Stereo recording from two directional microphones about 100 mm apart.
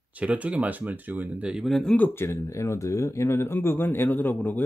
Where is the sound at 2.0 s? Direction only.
25° left (ahead or behind).